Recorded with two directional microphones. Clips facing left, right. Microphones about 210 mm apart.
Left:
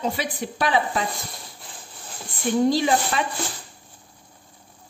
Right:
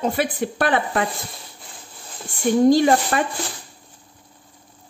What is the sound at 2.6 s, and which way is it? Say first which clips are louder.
Speech: right 7 dB; 50° right (ahead or behind).